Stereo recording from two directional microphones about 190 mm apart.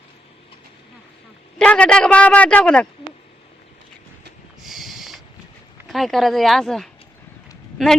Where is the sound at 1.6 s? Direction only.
5° left (ahead or behind).